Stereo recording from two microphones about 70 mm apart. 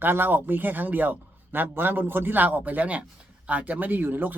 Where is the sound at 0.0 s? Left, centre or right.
Right.